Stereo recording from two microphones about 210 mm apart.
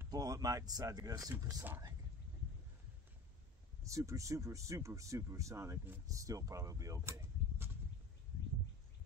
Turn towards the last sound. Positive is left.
turn(degrees=-15)  # may be behind; listen again after turning